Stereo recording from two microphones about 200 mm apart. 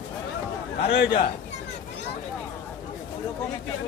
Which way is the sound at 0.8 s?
60° left (ahead or behind).